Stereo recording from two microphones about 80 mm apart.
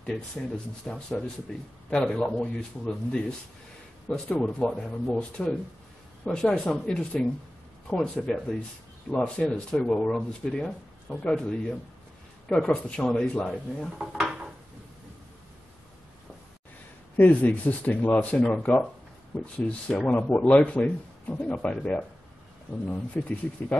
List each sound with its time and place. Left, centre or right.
0.8 s speech: centre
12.5 s speech: centre
13.9 s dishes: centre
17.2 s speech: left